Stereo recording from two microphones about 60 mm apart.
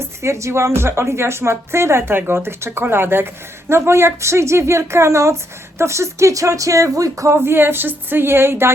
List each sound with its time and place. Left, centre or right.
0.2 s speech: right
7.3 s speech: right